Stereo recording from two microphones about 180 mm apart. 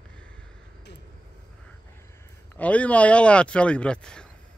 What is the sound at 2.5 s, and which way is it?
Speech, 10° left (ahead or behind).